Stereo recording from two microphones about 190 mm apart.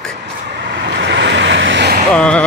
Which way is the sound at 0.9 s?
65° right (ahead or behind).